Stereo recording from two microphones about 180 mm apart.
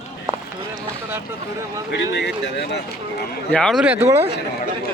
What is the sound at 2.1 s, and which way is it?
Speech, 65° left (ahead or behind).